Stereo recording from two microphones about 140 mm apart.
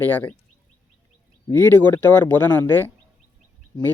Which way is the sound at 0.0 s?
10° left (ahead or behind).